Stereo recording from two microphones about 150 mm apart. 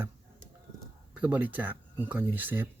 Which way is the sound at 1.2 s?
10° right (ahead or behind).